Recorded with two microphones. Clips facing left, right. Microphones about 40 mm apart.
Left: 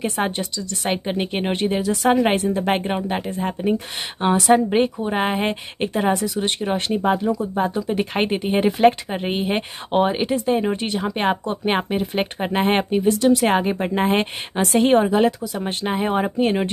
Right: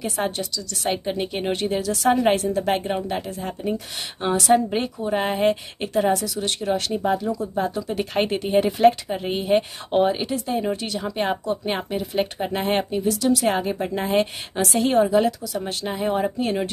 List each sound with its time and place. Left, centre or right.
0.0 s speech: left
4.6 s speech: left
11.1 s speech: left